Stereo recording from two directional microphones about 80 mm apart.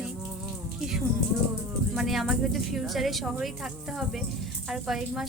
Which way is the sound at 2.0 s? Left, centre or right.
Centre.